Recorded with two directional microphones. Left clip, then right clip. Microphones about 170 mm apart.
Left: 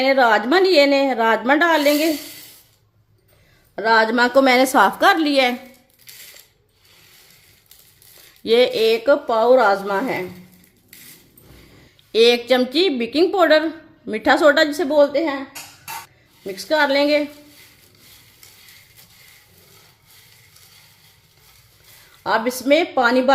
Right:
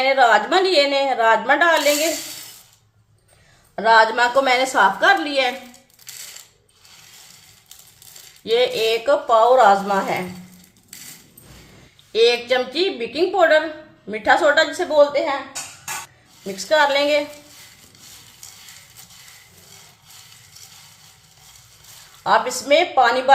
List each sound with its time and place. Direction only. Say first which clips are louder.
0.0 s a woman's voice: even; 55° left (ahead or behind)
3.8 s a woman's voice: right 1 dB; 50° left (ahead or behind)
8.4 s speech: left 3 dB; 60° left (ahead or behind); by 10.0 s 45° left (ahead or behind)
12.1 s a woman's voice: left 2 dB; 65° left (ahead or behind)
16.6 s speech: right 1 dB; 50° left (ahead or behind)
22.2 s speech: right 2 dB; 50° left (ahead or behind)